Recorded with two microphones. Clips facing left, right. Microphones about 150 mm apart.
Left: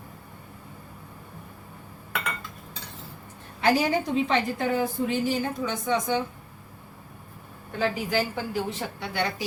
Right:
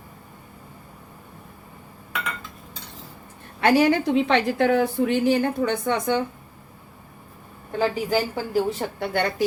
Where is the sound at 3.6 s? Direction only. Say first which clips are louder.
Right 5 dB; 65° right (ahead or behind).